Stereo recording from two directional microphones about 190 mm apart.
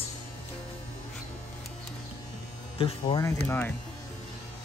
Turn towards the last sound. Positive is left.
turn(degrees=10)  # may be behind; listen again after turning